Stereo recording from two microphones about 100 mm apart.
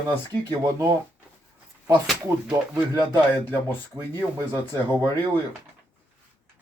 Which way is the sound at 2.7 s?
35° right (ahead or behind).